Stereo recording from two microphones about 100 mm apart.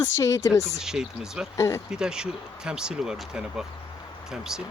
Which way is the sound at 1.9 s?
5° right (ahead or behind).